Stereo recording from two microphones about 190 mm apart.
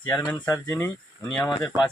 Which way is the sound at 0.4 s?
10° left (ahead or behind).